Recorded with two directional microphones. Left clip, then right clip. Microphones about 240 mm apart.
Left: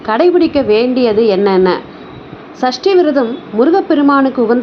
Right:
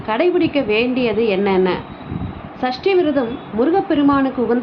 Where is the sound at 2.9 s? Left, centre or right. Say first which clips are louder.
Left 5 dB; left.